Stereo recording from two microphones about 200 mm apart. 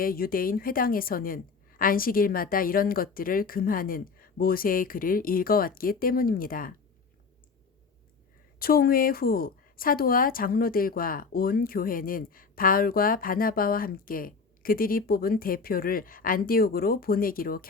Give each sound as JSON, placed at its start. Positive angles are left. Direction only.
{"t": 0.0, "sound": "a woman's voice", "side_deg": 45}
{"t": 8.5, "sound": "a woman's voice", "side_deg": 45}